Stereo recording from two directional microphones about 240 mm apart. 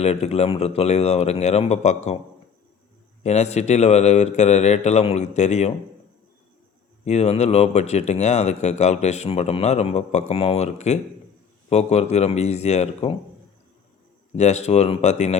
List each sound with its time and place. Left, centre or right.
0.0 s speech: left
3.2 s speech: left
7.0 s speech: left
14.3 s speech: left